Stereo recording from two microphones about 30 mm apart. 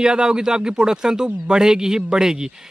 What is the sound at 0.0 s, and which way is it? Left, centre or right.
Speech, right.